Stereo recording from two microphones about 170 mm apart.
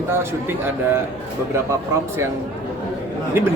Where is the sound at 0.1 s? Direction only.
15° right (ahead or behind).